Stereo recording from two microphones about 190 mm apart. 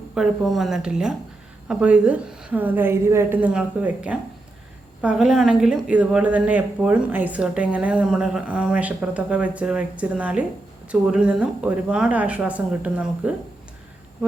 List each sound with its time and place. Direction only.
0.1 s speech: centre (ahead or behind)